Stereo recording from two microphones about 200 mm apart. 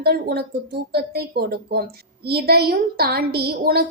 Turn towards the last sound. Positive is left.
turn(degrees=-50)  # may be behind; listen again after turning